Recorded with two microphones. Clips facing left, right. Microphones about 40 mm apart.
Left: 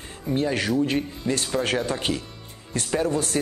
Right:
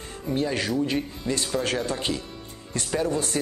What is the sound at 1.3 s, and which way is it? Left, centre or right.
Speech, centre.